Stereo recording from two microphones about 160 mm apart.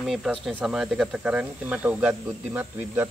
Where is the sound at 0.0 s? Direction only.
Centre (ahead or behind).